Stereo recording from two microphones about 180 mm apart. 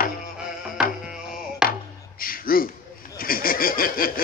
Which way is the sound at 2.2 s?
55° left (ahead or behind).